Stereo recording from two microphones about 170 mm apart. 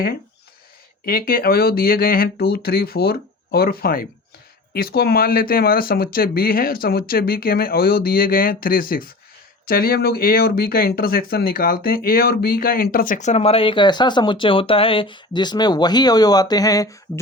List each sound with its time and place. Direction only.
1.0 s speech: 60° left (ahead or behind); by 17.0 s 20° left (ahead or behind)